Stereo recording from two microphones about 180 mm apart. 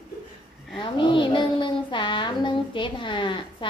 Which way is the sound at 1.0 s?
25° left (ahead or behind).